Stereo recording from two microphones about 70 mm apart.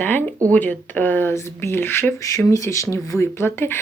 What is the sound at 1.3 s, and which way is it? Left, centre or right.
Speech, left.